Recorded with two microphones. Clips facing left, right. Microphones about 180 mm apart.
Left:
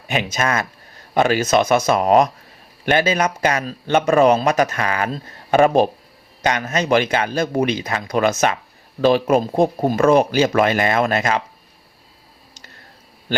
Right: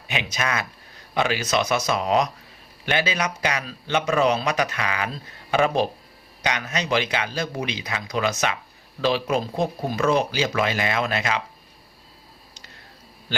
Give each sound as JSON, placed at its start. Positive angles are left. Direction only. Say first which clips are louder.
{"t": 0.1, "sound": "speech", "louder": "left 6 dB", "side_deg": 45}